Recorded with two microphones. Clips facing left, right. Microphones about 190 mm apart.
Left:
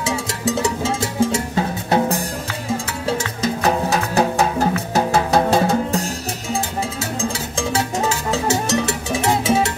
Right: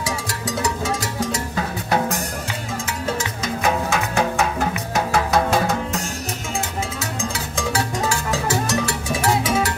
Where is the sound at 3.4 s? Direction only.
35° left (ahead or behind).